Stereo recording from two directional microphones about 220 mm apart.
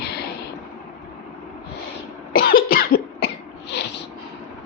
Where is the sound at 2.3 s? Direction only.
40° left (ahead or behind).